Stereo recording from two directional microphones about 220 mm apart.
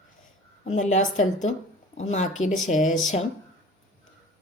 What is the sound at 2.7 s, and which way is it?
Speech, 35° left (ahead or behind).